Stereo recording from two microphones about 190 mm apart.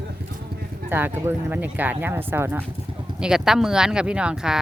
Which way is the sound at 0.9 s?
10° right (ahead or behind).